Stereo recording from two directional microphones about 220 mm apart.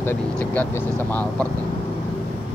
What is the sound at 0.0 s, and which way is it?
Speech, 10° left (ahead or behind).